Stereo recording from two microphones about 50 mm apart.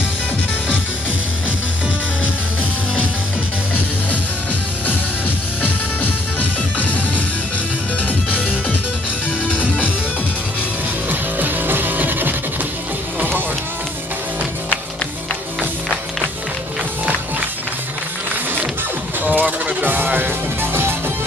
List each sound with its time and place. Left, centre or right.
6.8 s music: left
8.3 s music: left
11.1 s music: right
19.2 s music: right